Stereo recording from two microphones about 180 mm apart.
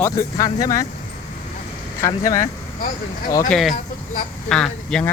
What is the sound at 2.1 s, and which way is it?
Speech, 20° left (ahead or behind).